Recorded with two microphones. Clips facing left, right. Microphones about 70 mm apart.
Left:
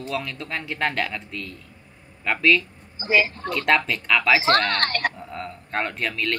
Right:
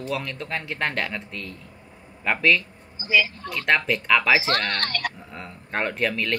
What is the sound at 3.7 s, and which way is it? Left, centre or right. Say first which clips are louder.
Speech: right 1 dB; centre.